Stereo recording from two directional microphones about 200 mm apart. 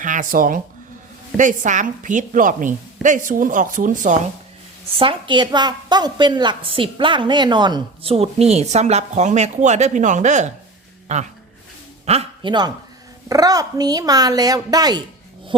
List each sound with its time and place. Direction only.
0.0 s a woman's voice: 40° right (ahead or behind)
4.9 s a woman's voice: 25° right (ahead or behind)